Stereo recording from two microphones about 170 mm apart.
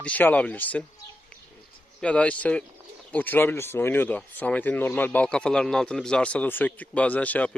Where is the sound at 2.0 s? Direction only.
5° left (ahead or behind).